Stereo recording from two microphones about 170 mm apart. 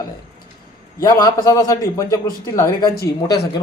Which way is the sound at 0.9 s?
20° left (ahead or behind).